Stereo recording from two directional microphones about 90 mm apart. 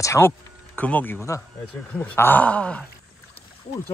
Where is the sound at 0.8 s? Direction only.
20° left (ahead or behind).